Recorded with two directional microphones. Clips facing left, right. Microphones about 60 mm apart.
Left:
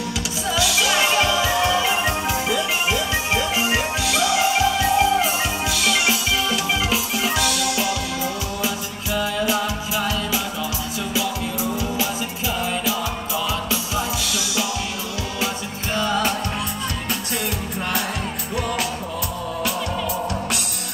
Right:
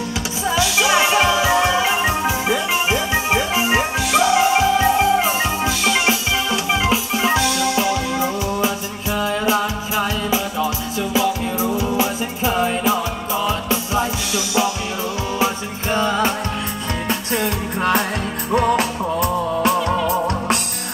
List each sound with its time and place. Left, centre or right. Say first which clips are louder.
0.5 s music: right 4 dB; right